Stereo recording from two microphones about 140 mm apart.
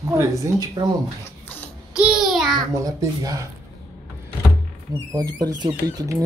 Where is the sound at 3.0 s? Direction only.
25° right (ahead or behind).